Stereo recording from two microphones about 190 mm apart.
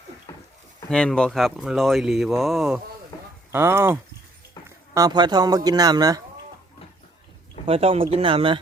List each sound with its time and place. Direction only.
0.9 s a man's voice: 5° left (ahead or behind); by 6.2 s 20° right (ahead or behind)
7.7 s a man's voice: 30° right (ahead or behind)